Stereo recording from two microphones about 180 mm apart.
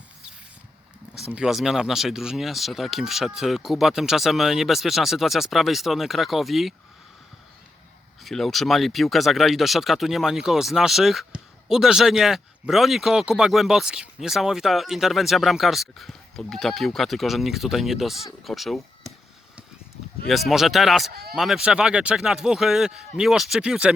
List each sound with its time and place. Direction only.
1.1 s speech: 5° right (ahead or behind)
8.2 s speech: centre (ahead or behind)
20.2 s speech: centre (ahead or behind)